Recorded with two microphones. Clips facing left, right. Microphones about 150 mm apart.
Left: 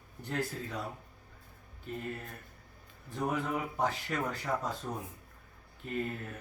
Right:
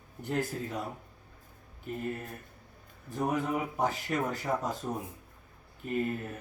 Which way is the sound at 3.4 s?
15° right (ahead or behind).